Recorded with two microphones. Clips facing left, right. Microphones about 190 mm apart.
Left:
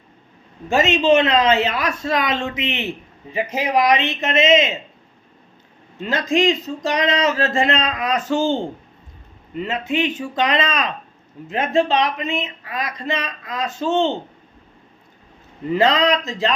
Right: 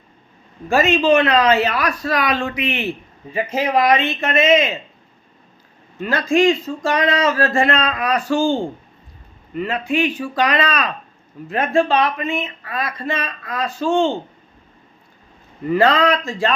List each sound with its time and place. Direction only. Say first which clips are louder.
0.7 s speech: right 1 dB; 20° left (ahead or behind)
6.0 s speech: right 3 dB; 20° left (ahead or behind)
15.7 s speech: right 1 dB; 20° left (ahead or behind)